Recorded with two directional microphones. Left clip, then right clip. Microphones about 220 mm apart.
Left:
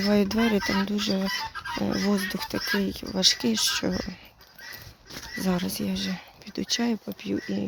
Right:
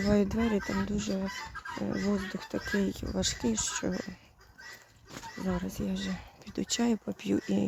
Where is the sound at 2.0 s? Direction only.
15° left (ahead or behind).